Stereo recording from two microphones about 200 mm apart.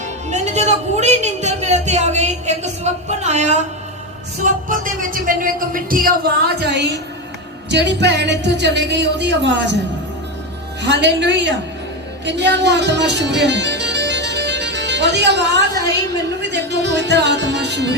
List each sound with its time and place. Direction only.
0.3 s a woman's voice: 35° right (ahead or behind)
6.6 s a woman's voice: 60° right (ahead or behind)
10.8 s a woman's voice: 60° right (ahead or behind)
12.2 s music: 60° right (ahead or behind)